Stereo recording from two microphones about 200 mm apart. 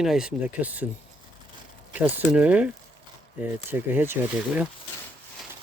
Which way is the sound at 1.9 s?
5° right (ahead or behind).